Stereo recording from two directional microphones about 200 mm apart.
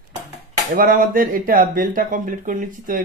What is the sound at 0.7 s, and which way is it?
Speech, 45° right (ahead or behind).